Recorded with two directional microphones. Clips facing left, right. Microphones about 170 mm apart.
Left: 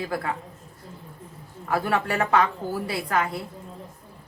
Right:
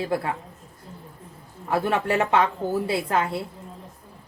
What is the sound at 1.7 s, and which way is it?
A woman's voice, 20° right (ahead or behind).